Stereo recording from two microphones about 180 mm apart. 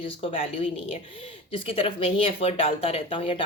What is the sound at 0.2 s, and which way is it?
Speech, 30° left (ahead or behind).